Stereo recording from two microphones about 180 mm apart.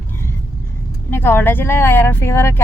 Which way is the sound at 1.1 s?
10° left (ahead or behind).